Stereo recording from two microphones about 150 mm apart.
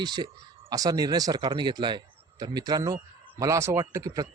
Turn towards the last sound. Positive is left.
turn(degrees=-25)  # may be behind; listen again after turning